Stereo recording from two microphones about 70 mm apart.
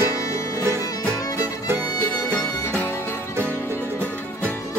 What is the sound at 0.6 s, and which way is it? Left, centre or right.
Music, right.